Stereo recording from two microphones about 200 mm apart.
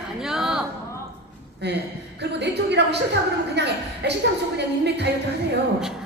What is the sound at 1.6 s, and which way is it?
A woman's voice, 60° right (ahead or behind).